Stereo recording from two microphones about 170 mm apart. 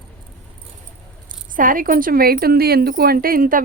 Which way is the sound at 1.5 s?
55° right (ahead or behind).